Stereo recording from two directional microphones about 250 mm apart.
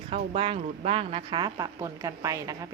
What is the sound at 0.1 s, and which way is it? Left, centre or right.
A woman's voice, right.